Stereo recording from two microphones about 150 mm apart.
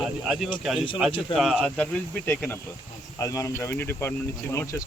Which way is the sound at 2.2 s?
15° left (ahead or behind).